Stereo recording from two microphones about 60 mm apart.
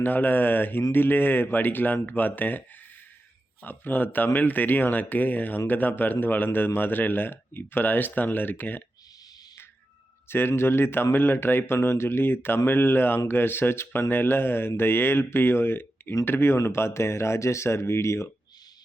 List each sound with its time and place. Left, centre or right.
0.0 s speech: left
10.2 s speech: left